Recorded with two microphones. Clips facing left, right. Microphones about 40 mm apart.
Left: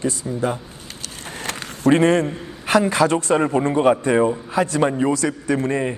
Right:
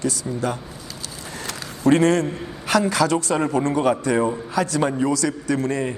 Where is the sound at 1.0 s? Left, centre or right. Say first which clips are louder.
Left 3 dB; left.